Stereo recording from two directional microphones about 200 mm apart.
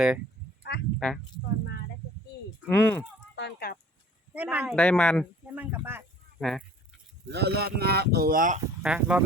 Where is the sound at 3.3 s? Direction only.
55° left (ahead or behind).